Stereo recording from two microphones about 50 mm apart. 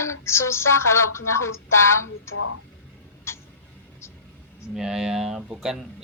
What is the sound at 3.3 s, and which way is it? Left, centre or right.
Tick-tock, left.